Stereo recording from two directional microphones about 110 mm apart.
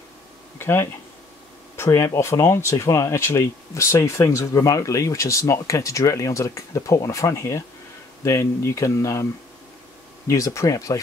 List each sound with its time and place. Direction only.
0.6 s speech: 20° left (ahead or behind)